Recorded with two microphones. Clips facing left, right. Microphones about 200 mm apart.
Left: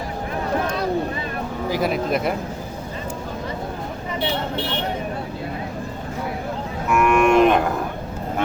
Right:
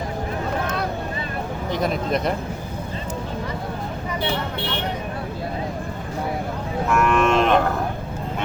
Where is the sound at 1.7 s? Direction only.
5° left (ahead or behind).